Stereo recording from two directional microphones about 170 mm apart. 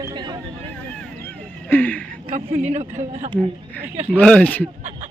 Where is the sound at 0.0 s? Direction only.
25° right (ahead or behind).